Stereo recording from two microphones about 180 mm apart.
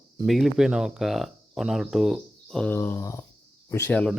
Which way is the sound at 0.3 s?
Centre (ahead or behind).